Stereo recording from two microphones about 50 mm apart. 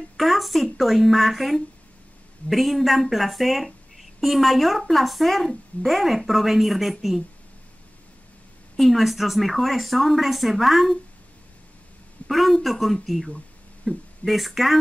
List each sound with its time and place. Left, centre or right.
0.2 s a woman's voice: centre
8.7 s a woman's voice: centre
12.3 s a woman's voice: centre